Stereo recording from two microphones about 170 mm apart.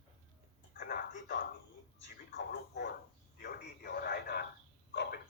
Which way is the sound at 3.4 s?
65° left (ahead or behind).